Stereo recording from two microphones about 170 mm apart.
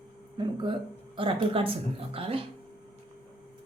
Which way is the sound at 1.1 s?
30° right (ahead or behind).